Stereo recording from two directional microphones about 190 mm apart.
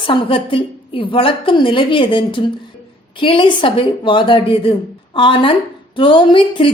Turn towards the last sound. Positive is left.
turn(degrees=25)  # may be behind; listen again after turning